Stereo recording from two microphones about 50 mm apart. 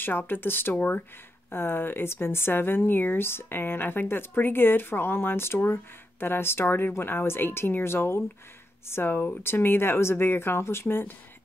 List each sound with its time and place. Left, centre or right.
0.0 s speech: left
0.7 s speech: left
1.5 s speech: left